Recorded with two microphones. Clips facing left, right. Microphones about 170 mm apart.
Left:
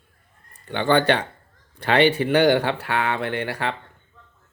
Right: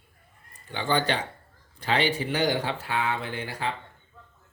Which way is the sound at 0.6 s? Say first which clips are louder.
Left 7 dB; 65° left (ahead or behind).